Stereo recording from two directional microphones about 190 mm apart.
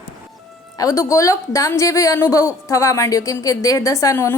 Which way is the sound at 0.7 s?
15° left (ahead or behind).